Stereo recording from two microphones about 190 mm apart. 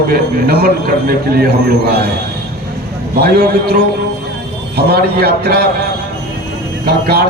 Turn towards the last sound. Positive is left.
turn(degrees=-55)  # may be behind; listen again after turning